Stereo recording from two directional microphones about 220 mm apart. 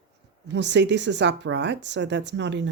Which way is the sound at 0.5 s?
55° right (ahead or behind).